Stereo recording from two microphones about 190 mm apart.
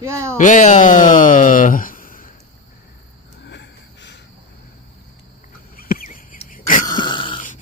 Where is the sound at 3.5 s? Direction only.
65° left (ahead or behind).